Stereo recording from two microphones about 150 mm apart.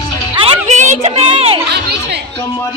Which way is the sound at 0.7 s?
50° right (ahead or behind).